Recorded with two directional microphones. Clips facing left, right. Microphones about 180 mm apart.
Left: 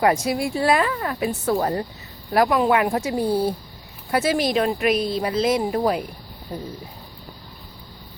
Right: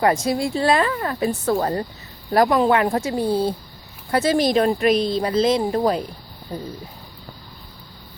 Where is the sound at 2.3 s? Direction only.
5° left (ahead or behind).